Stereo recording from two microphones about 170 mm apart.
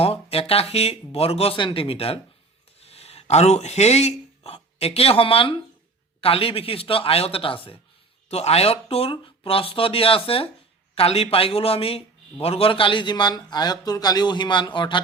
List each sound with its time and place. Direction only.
0.0 s a man's voice: 35° left (ahead or behind)